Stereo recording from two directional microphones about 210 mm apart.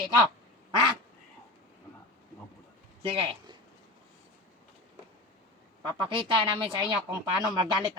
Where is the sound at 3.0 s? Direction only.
25° right (ahead or behind).